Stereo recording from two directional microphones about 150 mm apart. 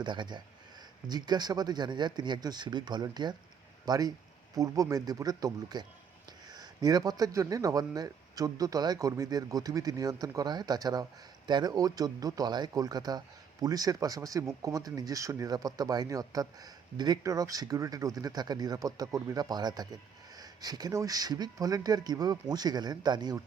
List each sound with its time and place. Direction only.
0.0 s speech: 30° right (ahead or behind)